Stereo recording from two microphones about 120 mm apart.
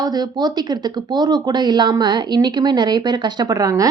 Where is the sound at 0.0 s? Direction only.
35° right (ahead or behind).